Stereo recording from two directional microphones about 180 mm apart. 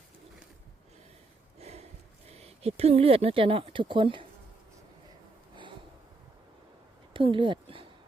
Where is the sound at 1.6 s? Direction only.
35° right (ahead or behind).